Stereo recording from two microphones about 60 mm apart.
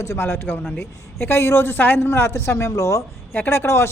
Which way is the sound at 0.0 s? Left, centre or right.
Left.